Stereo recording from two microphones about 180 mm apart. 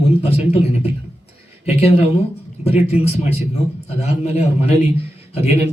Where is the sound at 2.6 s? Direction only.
35° left (ahead or behind).